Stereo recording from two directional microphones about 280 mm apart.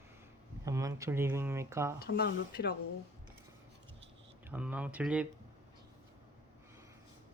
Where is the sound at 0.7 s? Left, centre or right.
Centre.